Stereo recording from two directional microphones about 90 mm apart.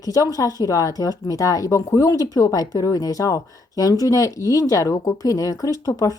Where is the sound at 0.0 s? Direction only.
40° left (ahead or behind).